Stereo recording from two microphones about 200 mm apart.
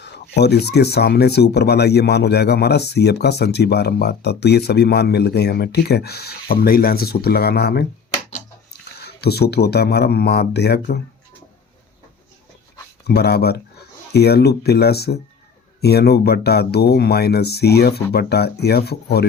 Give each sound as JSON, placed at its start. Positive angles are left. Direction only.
{"t": 0.0, "sound": "speech", "side_deg": 55}
{"t": 9.0, "sound": "speech", "side_deg": 55}
{"t": 13.1, "sound": "speech", "side_deg": 55}